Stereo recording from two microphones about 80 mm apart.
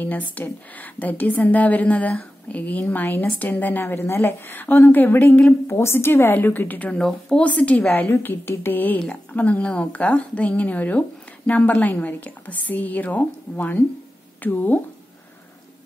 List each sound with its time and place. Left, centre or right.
0.0 s a woman's voice: left
7.0 s speech: centre
7.4 s a woman's voice: centre